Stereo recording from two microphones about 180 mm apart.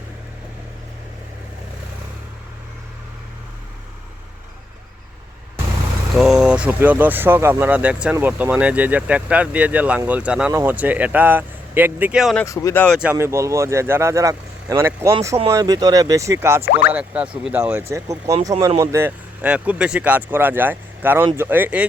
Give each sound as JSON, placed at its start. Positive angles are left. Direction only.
{"t": 6.1, "sound": "speech", "side_deg": 0}
{"t": 12.5, "sound": "speech", "side_deg": 15}
{"t": 13.0, "sound": "speech", "side_deg": -10}